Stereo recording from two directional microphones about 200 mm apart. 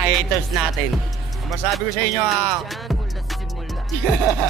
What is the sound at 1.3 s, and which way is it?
Music, centre (ahead or behind).